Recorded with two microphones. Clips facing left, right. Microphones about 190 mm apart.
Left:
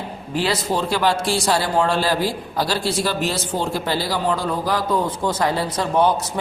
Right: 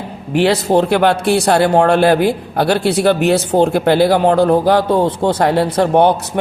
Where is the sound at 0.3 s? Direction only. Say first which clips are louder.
Right 9 dB; 65° right (ahead or behind).